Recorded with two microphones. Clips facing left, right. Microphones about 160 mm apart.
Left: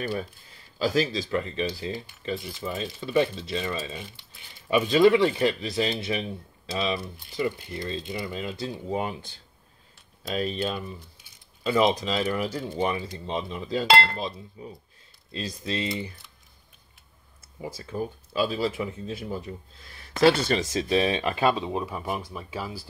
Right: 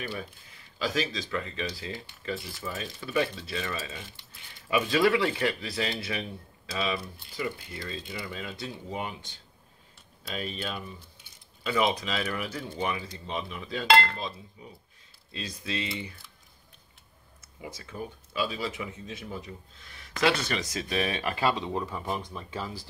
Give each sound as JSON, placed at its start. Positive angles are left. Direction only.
{"t": 0.7, "sound": "speech", "side_deg": 35}
{"t": 10.3, "sound": "speech", "side_deg": 40}
{"t": 15.3, "sound": "speech", "side_deg": 35}
{"t": 17.6, "sound": "speech", "side_deg": 30}